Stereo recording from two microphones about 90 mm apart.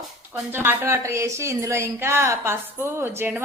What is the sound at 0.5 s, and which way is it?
A woman's voice, 25° right (ahead or behind).